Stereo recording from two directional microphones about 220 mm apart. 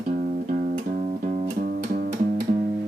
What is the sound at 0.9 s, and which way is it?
Music, 35° right (ahead or behind).